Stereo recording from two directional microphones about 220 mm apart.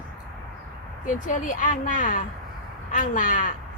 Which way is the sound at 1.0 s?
35° left (ahead or behind).